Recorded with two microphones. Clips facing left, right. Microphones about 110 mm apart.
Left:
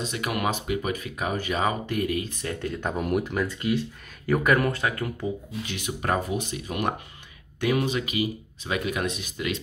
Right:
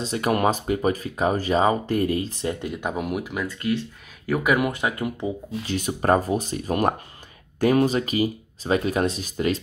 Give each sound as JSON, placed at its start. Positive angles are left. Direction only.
{"t": 0.0, "sound": "speech", "side_deg": -35}
{"t": 2.6, "sound": "speech", "side_deg": -10}
{"t": 5.7, "sound": "speech", "side_deg": -40}